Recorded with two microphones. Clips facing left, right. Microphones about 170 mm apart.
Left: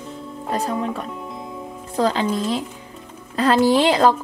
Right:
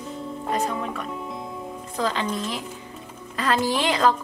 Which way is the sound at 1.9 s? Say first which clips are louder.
Left 6 dB; 35° left (ahead or behind).